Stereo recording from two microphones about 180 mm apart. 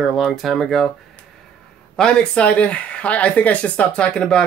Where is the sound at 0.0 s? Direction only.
Centre (ahead or behind).